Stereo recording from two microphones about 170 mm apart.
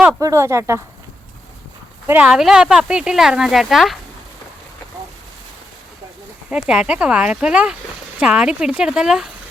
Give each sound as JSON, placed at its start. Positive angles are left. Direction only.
{"t": 0.2, "sound": "speech", "side_deg": -20}
{"t": 2.0, "sound": "speech", "side_deg": -10}
{"t": 6.5, "sound": "speech", "side_deg": -5}